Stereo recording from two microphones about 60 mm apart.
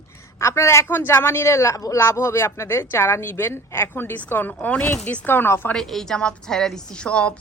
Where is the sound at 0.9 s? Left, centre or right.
Left.